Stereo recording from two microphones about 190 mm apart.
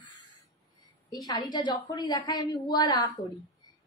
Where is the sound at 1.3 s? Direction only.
20° left (ahead or behind).